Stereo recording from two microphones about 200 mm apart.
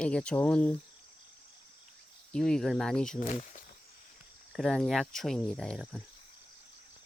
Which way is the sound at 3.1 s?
40° left (ahead or behind).